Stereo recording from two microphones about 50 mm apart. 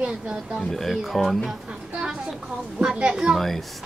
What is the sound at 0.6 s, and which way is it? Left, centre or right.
Speech, centre.